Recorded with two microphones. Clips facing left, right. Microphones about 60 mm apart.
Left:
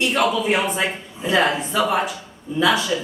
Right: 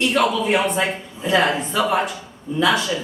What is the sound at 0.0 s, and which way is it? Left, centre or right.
Speech, centre.